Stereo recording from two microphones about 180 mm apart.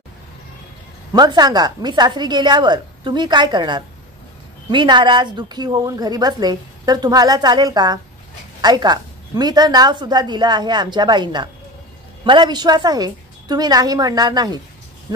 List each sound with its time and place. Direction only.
1.1 s speech: 20° right (ahead or behind)